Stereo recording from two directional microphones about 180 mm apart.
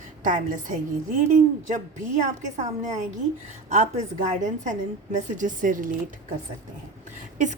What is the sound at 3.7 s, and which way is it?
Speech, 40° right (ahead or behind).